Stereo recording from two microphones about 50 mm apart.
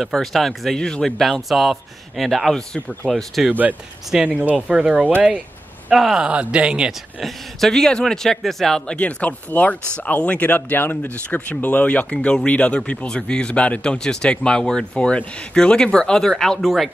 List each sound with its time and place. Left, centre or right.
0.0 s speech: centre
2.5 s speech: centre
3.1 s speech: centre
4.3 s speech: right
4.6 s speech: centre
5.9 s speech: centre
6.2 s speech: centre
6.9 s speech: centre
8.9 s a man's voice: left
11.2 s a man's voice: left; by 16.9 s centre